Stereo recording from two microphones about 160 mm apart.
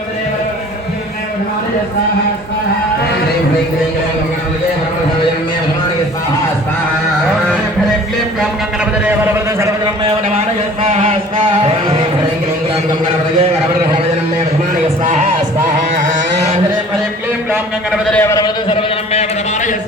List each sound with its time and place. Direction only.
15.0 s music: 45° right (ahead or behind)
18.1 s a man's voice: 15° left (ahead or behind)
18.7 s a man's voice: 35° left (ahead or behind)